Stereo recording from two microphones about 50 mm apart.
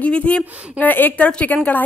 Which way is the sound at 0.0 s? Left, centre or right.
Left.